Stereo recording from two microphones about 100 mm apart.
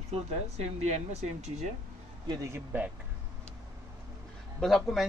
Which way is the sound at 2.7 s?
20° right (ahead or behind).